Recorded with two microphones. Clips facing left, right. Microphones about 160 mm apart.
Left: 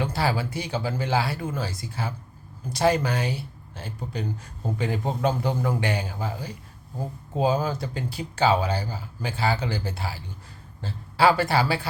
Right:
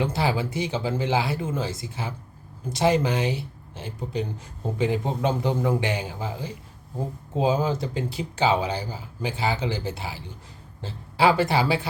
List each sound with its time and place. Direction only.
0.0 s speech: 20° right (ahead or behind)